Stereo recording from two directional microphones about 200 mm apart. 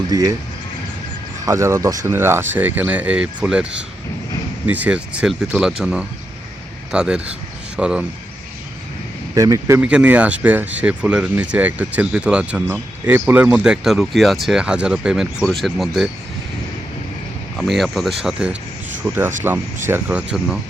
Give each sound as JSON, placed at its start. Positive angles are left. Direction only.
{"t": 0.1, "sound": "speech", "side_deg": -20}
{"t": 1.5, "sound": "speech", "side_deg": -15}
{"t": 9.3, "sound": "speech", "side_deg": -15}
{"t": 17.6, "sound": "speech", "side_deg": 0}